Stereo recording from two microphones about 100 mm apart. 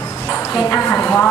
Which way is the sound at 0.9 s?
15° left (ahead or behind).